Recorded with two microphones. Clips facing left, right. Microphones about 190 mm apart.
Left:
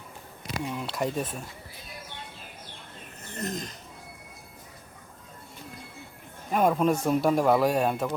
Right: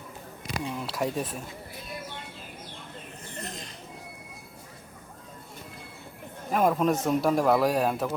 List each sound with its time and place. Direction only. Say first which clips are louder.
0.8 s speech: even; centre (ahead or behind)
3.3 s speech: left 7 dB; 45° left (ahead or behind)
6.5 s speech: left 1 dB; centre (ahead or behind)